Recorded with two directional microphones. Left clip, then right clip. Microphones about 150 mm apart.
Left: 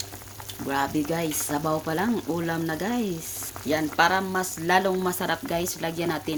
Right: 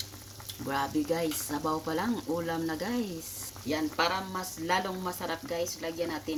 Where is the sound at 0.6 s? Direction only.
30° left (ahead or behind).